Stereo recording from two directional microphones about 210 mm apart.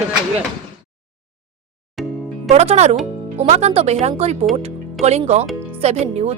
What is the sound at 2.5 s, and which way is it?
Speech, 30° right (ahead or behind).